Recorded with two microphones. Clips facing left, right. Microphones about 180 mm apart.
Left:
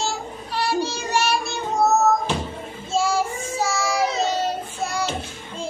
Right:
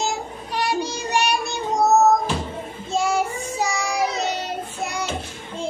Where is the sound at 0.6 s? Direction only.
15° right (ahead or behind).